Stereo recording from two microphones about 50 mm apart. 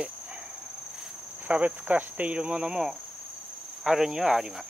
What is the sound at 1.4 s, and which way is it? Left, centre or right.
Speech, right.